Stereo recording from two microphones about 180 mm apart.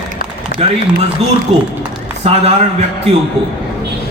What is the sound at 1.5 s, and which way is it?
A man's voice, 35° right (ahead or behind).